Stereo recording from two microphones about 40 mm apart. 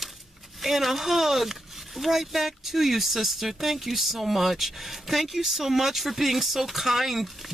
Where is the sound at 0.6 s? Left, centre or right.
Centre.